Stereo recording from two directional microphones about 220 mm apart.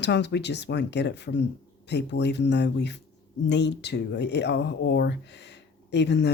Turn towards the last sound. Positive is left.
turn(degrees=50)  # may be behind; listen again after turning